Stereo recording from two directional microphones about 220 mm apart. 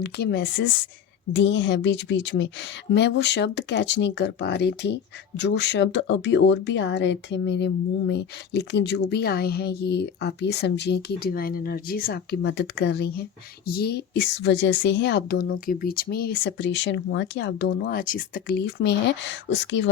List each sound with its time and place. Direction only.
0.0 s speech: 50° left (ahead or behind)